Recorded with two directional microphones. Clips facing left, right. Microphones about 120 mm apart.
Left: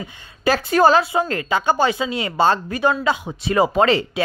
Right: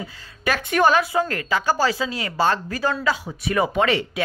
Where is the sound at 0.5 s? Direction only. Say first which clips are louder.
Left 4 dB; 30° left (ahead or behind).